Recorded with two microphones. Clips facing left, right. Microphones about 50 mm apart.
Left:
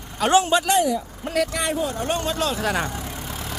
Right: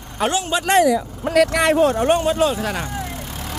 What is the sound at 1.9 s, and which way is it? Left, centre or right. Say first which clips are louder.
Speech: right 8 dB; right.